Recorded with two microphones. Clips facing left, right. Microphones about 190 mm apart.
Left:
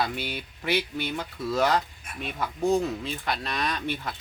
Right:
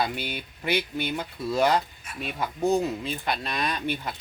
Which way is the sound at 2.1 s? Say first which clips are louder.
Right 1 dB; 55° left (ahead or behind).